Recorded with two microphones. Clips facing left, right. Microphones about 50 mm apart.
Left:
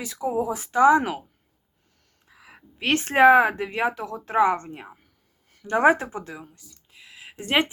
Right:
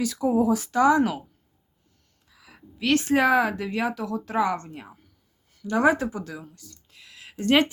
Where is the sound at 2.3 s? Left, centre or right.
Left.